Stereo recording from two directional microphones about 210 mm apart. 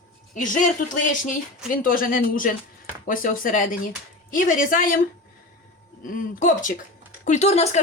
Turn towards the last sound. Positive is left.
turn(degrees=30)  # may be behind; listen again after turning